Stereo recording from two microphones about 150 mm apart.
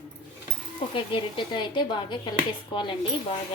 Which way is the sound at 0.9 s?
35° left (ahead or behind).